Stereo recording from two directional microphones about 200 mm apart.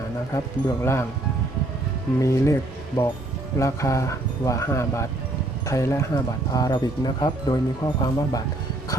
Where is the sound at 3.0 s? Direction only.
20° left (ahead or behind).